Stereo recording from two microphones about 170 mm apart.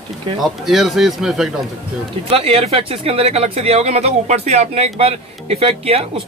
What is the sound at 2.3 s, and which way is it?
Speech, 35° right (ahead or behind).